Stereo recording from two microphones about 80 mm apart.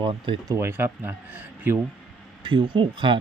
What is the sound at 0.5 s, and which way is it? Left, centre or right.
Speech, right.